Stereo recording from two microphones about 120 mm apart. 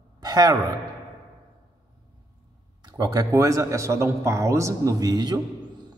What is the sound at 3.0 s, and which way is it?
A man's voice, 35° right (ahead or behind).